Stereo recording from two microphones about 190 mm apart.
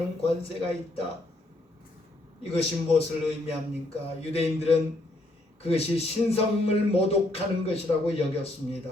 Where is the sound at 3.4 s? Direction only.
30° left (ahead or behind).